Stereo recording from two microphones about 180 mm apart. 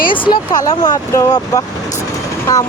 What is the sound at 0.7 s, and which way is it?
Speech, 20° left (ahead or behind).